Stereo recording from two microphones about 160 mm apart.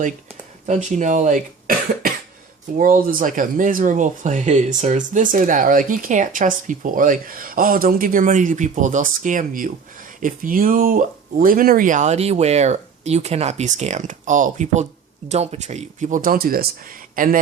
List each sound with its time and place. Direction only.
0.7 s speech: 50° right (ahead or behind)